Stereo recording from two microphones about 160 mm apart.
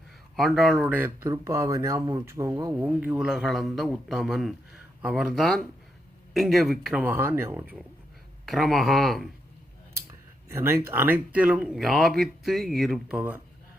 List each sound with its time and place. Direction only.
0.3 s speech: centre (ahead or behind)
0.9 s speech: 10° right (ahead or behind)
2.7 s speech: 10° right (ahead or behind)
8.4 s speech: centre (ahead or behind)
9.9 s speech: 15° right (ahead or behind)